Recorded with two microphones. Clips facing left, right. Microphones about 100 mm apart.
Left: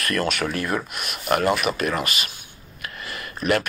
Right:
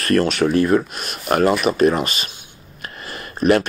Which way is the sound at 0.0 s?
30° right (ahead or behind).